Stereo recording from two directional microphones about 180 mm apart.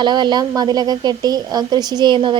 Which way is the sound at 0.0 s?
25° right (ahead or behind).